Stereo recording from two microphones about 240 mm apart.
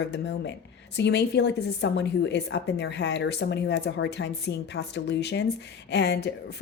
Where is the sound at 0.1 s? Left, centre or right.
Left.